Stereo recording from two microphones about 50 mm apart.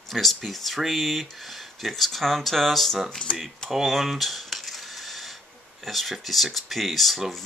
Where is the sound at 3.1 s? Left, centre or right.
Centre.